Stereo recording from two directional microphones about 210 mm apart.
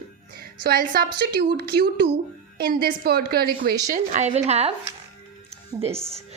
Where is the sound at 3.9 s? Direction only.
35° right (ahead or behind).